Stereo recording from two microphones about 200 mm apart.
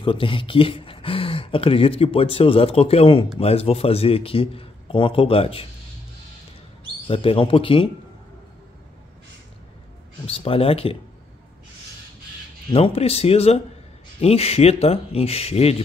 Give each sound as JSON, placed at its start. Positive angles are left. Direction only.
{"t": 0.0, "sound": "a man's voice", "side_deg": 25}
{"t": 7.1, "sound": "a man's voice", "side_deg": 25}
{"t": 10.2, "sound": "a man's voice", "side_deg": 30}
{"t": 12.7, "sound": "speech", "side_deg": 30}